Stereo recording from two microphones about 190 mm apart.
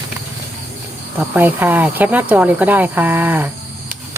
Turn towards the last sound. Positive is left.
turn(degrees=-10)  # may be behind; listen again after turning